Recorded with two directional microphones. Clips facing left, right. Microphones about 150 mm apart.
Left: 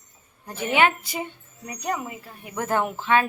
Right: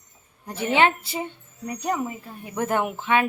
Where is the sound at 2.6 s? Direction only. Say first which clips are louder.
Even; 20° right (ahead or behind).